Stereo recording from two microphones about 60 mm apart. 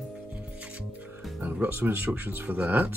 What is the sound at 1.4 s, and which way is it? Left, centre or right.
Speech, right.